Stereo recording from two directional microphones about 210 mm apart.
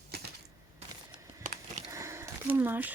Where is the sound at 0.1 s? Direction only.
50° right (ahead or behind).